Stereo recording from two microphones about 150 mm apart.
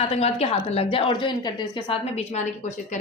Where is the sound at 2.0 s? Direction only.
45° left (ahead or behind).